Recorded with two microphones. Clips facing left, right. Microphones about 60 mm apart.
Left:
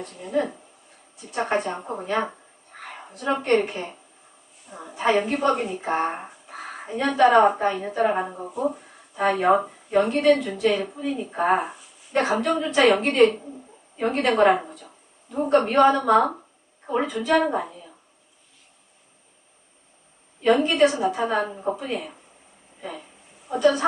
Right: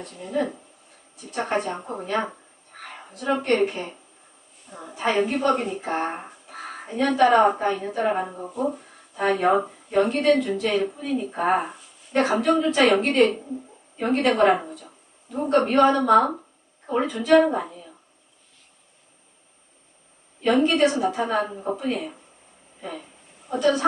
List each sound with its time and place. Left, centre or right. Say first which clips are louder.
0.0 s a woman's voice: left 1 dB; centre
2.8 s a sound: even; centre
3.6 s a woman's voice: right 3 dB; centre
20.4 s a woman's voice: left 1 dB; centre